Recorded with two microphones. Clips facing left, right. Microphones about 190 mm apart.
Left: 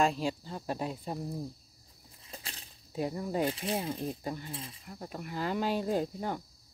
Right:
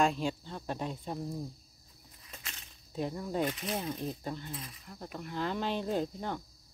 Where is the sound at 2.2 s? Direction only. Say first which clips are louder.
Left 3 dB; 30° left (ahead or behind).